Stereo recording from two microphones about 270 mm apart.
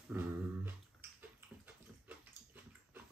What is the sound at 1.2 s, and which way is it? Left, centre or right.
Bathtub, centre.